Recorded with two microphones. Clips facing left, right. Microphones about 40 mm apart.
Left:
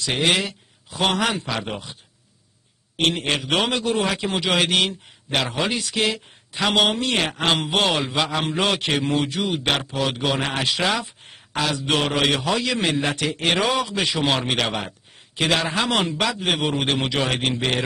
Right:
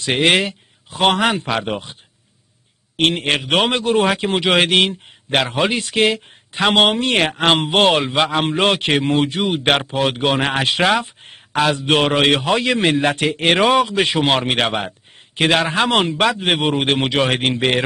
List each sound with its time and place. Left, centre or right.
0.0 s a man's voice: right
3.0 s a man's voice: right